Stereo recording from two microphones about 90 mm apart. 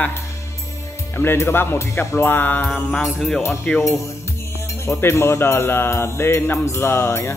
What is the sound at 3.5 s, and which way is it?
Speech, 5° left (ahead or behind).